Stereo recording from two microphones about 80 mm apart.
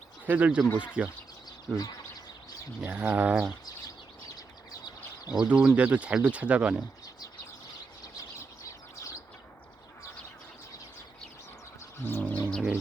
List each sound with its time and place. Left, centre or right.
0.3 s speech: centre
2.8 s speech: right
4.4 s a sound: left
5.5 s speech: centre
12.0 s bird: left
12.5 s bird: centre